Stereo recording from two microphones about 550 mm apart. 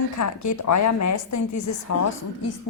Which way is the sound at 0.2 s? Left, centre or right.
Left.